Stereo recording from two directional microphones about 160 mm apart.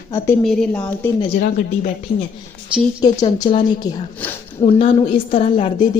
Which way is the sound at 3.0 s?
25° left (ahead or behind).